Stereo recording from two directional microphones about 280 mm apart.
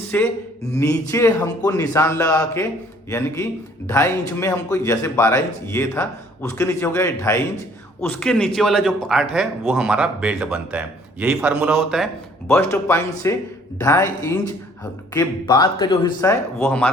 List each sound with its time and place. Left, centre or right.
0.1 s a man's voice: centre
12.5 s a man's voice: centre